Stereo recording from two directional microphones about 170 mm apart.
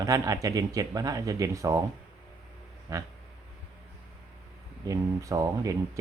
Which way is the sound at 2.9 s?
20° right (ahead or behind).